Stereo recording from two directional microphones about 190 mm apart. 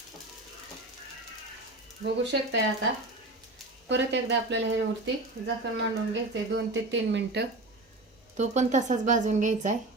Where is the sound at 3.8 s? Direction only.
65° right (ahead or behind).